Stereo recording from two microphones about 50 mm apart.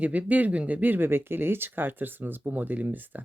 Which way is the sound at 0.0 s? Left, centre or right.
Right.